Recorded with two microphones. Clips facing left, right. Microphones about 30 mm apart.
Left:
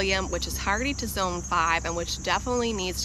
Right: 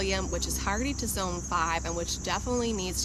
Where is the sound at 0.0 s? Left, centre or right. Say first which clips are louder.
Left 4 dB; left.